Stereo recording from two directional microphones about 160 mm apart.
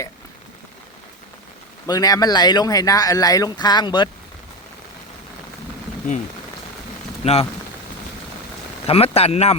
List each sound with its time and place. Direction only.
1.9 s speech: 25° left (ahead or behind)
7.2 s speech: 40° left (ahead or behind)
8.9 s speech: 40° left (ahead or behind)